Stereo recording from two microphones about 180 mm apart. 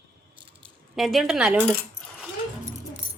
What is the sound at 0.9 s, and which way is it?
Speech, centre (ahead or behind).